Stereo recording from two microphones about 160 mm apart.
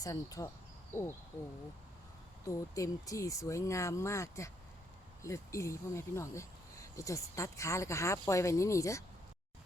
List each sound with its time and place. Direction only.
0.0 s speech: 20° left (ahead or behind)
0.9 s owl: 15° left (ahead or behind)
2.5 s speech: 20° left (ahead or behind)